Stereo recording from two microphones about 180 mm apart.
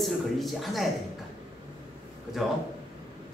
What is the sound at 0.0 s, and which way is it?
Speech, centre (ahead or behind).